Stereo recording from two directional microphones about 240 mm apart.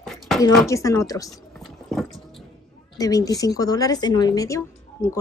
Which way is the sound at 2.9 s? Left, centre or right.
Centre.